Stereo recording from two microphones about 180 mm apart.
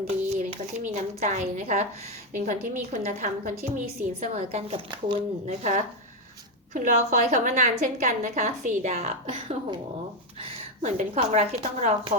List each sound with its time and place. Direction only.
0.9 s a woman's voice: 40° right (ahead or behind)
5.5 s a woman's voice: 45° right (ahead or behind)
10.8 s a woman's voice: 40° right (ahead or behind)